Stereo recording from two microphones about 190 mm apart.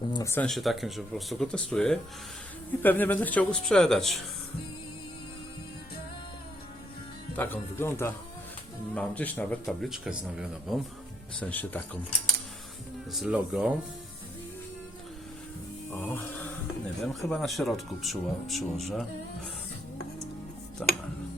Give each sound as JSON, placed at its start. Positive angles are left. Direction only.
{"t": 0.1, "sound": "a sound", "side_deg": 15}
{"t": 0.4, "sound": "speech", "side_deg": 0}
{"t": 7.3, "sound": "speech", "side_deg": 10}
{"t": 11.3, "sound": "speech", "side_deg": 10}
{"t": 13.1, "sound": "speech", "side_deg": -5}
{"t": 15.9, "sound": "music", "side_deg": 10}
{"t": 17.0, "sound": "speech", "side_deg": 0}
{"t": 20.8, "sound": "speech", "side_deg": 0}